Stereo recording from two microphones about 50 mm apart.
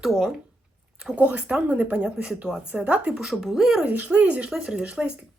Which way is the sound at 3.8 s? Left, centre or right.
Right.